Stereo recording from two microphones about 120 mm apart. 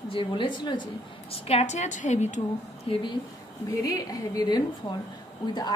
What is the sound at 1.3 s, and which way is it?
A woman's voice, 60° left (ahead or behind).